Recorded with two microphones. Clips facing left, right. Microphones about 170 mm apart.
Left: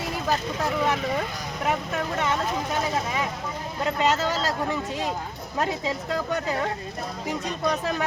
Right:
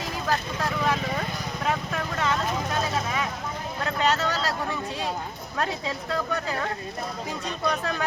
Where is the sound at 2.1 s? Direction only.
20° left (ahead or behind).